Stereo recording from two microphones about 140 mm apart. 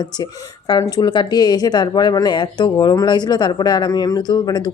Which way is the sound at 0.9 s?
30° left (ahead or behind).